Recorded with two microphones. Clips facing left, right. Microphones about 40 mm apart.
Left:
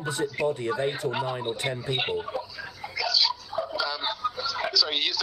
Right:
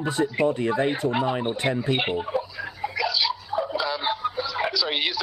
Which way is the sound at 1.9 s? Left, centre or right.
Centre.